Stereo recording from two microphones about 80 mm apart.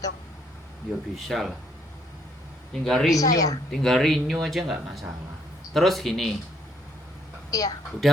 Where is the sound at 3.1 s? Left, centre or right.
Left.